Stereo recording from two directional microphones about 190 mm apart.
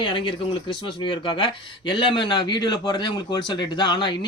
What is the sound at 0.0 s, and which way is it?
Speech, 25° left (ahead or behind).